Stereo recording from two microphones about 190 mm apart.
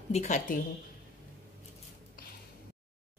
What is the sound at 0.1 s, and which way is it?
Speech, 40° left (ahead or behind).